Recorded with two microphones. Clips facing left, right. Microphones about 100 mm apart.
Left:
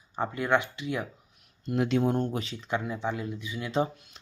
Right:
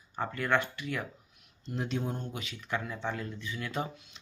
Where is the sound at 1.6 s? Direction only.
70° left (ahead or behind).